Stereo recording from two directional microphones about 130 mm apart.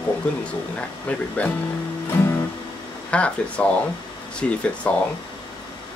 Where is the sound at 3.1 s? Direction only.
10° left (ahead or behind).